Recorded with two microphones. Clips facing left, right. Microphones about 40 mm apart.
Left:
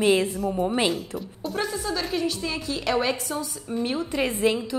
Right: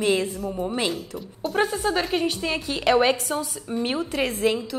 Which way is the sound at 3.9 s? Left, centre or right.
Centre.